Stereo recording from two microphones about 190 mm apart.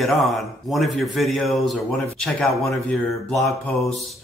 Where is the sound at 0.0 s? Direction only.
Centre (ahead or behind).